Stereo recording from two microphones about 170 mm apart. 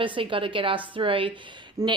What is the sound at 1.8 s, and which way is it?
Speech, 20° right (ahead or behind).